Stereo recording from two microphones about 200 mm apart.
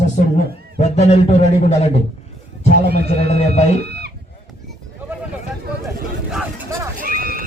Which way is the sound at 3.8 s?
55° right (ahead or behind).